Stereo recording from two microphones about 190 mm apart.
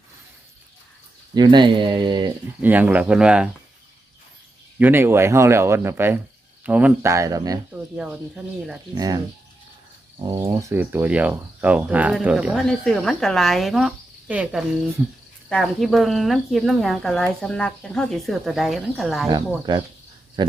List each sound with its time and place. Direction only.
1.4 s speech: 25° right (ahead or behind)
2.6 s speech: 10° right (ahead or behind)
4.8 s speech: 10° right (ahead or behind)
7.9 s speech: 5° right (ahead or behind)
10.2 s speech: 20° right (ahead or behind); by 19.3 s centre (ahead or behind)